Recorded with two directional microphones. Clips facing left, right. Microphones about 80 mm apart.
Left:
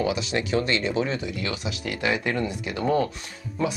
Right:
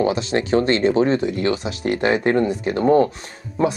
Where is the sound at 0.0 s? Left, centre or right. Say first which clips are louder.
Right 6 dB; right.